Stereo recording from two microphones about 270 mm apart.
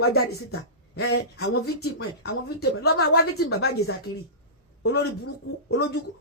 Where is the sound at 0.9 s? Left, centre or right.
Left.